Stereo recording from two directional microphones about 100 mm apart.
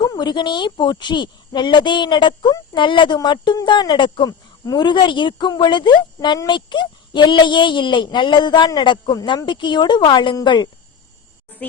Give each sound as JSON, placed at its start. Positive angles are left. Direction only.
{"t": 0.1, "sound": "a woman's voice", "side_deg": 45}